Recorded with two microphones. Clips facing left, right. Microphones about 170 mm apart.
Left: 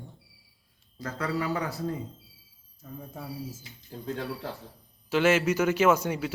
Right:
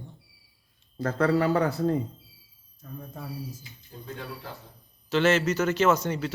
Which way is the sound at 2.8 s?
5° left (ahead or behind).